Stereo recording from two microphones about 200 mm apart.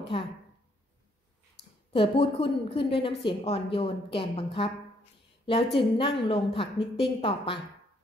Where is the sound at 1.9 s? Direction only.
25° left (ahead or behind).